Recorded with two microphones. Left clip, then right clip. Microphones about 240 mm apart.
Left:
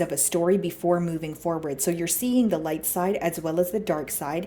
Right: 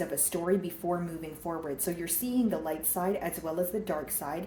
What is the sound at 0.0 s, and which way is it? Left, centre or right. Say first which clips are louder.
Speech: left 8 dB; left.